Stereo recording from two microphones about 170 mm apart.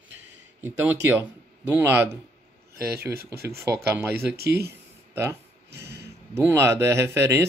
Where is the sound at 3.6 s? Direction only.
15° right (ahead or behind).